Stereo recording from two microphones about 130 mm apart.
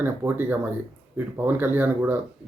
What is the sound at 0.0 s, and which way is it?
Speech, 15° right (ahead or behind).